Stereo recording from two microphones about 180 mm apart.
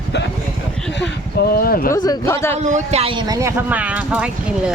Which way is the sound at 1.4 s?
55° left (ahead or behind).